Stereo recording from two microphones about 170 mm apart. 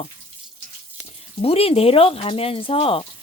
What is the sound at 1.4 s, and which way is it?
Speech, 35° left (ahead or behind).